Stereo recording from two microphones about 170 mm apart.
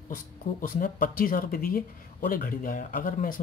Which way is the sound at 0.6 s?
55° left (ahead or behind).